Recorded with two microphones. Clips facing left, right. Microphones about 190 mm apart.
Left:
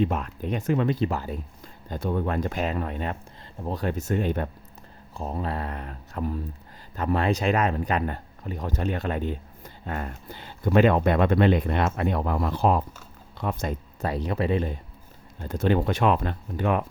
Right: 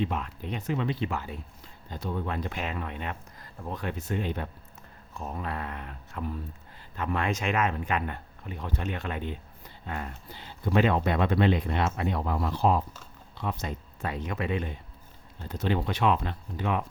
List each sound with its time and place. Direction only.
0.0 s speech: 45° left (ahead or behind)
5.1 s speech: 30° left (ahead or behind)
15.4 s speech: 50° left (ahead or behind)